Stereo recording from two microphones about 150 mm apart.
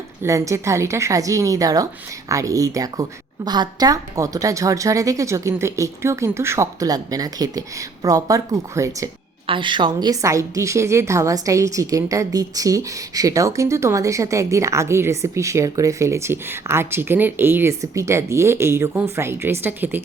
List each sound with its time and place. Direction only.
0.2 s a woman's voice: 20° right (ahead or behind)
9.5 s a woman's voice: 30° right (ahead or behind); by 20.0 s 15° right (ahead or behind)